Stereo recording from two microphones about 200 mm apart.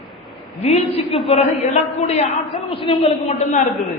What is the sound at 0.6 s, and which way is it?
A man's voice, 30° left (ahead or behind).